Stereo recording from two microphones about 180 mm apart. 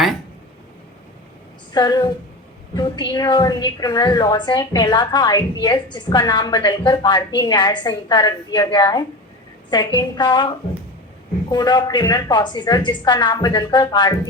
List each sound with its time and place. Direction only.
1.7 s a woman's voice: 20° left (ahead or behind)